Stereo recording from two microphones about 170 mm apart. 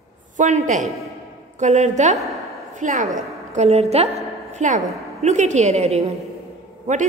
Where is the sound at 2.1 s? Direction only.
Centre (ahead or behind).